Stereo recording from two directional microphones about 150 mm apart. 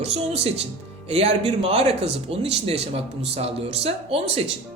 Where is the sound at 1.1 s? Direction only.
45° right (ahead or behind).